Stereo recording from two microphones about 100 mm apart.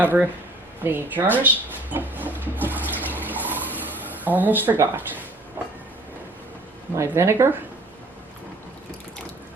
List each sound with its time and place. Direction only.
0.0 s speech: 20° right (ahead or behind)
0.8 s a sound: 20° right (ahead or behind)
7.1 s speech: 25° right (ahead or behind)